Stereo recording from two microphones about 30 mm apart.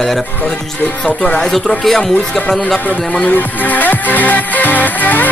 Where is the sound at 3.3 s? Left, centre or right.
Left.